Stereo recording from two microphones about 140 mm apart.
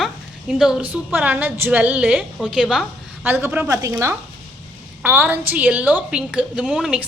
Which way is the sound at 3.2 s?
15° right (ahead or behind).